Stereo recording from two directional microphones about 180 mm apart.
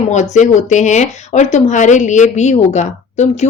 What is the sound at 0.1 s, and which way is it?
A woman's voice, 40° left (ahead or behind).